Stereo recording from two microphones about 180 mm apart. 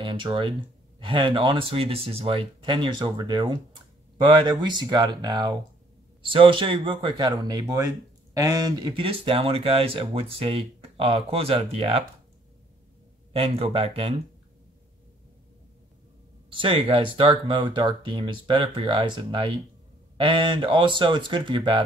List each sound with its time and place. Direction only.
0.0 s speech: 25° right (ahead or behind)
13.3 s speech: 30° right (ahead or behind)
16.4 s speech: 30° right (ahead or behind)